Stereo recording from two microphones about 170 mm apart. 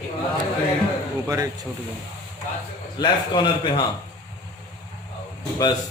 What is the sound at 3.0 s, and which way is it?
Speech, 25° left (ahead or behind).